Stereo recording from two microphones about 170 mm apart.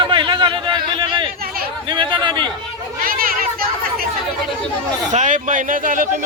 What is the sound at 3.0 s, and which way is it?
Children playing, 60° right (ahead or behind).